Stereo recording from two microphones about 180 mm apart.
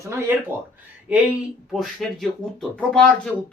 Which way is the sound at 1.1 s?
Centre (ahead or behind).